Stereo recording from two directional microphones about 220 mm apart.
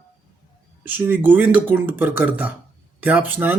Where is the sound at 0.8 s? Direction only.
10° right (ahead or behind).